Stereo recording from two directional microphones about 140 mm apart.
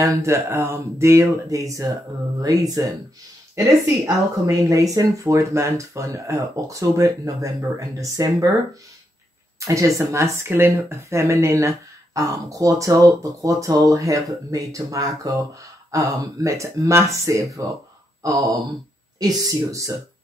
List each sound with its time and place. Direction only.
0.0 s speech: 25° right (ahead or behind)
9.7 s speech: 25° right (ahead or behind)
19.1 s speech: 25° right (ahead or behind)